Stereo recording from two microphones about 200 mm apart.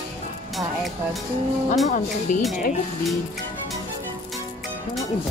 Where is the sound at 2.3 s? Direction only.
40° left (ahead or behind).